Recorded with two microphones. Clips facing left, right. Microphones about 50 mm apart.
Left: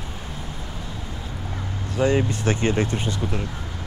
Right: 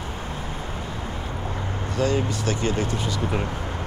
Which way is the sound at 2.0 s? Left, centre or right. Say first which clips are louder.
Left 4 dB; left.